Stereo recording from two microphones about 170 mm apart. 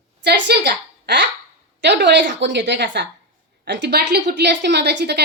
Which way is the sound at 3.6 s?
85° right.